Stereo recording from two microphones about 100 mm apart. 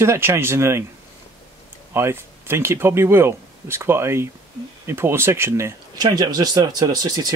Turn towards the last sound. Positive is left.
turn(degrees=-40)  # may be behind; listen again after turning